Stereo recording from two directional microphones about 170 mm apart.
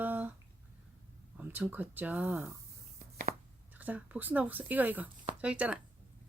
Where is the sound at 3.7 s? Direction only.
10° right (ahead or behind).